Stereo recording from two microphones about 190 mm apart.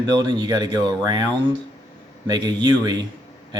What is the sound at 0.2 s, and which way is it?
Speech, 25° right (ahead or behind).